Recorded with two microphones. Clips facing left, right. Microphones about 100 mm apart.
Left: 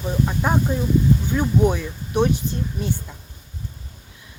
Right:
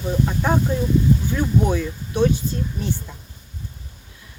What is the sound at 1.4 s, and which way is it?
Speech, 15° left (ahead or behind).